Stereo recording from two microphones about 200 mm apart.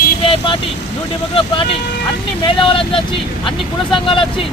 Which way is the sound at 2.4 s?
25° left (ahead or behind).